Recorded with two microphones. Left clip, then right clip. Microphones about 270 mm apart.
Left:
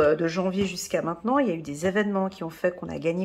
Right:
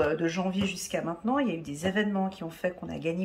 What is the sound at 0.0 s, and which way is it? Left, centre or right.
Speech, centre.